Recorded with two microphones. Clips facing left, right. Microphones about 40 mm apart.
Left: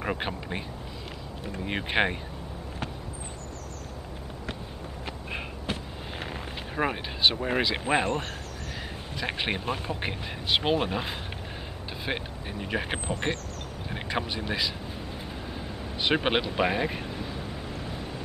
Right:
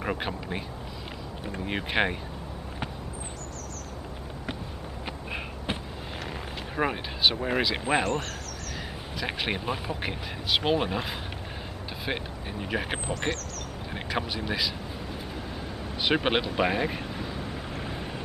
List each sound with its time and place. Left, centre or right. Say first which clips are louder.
0.0 s speech: even; centre
5.7 s a sound: right 1 dB; right
6.2 s speech: even; centre
8.0 s speech: even; centre
16.0 s speech: even; centre
17.8 s vehicle: right 1 dB; right